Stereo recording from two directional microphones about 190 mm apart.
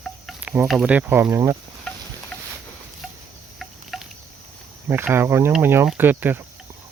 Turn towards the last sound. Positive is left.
turn(degrees=-10)  # may be behind; listen again after turning